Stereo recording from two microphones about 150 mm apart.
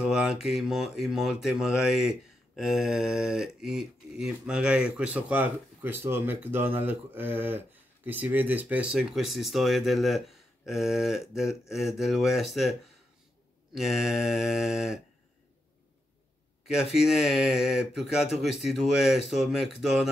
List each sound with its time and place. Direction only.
0.0 s speech: 5° right (ahead or behind)
13.7 s speech: 5° right (ahead or behind)
16.6 s speech: 5° right (ahead or behind)